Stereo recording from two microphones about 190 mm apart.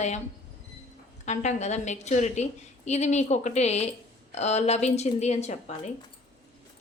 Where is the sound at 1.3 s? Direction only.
35° left (ahead or behind).